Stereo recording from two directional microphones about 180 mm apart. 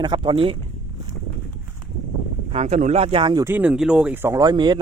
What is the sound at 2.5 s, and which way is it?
Speech, 40° right (ahead or behind).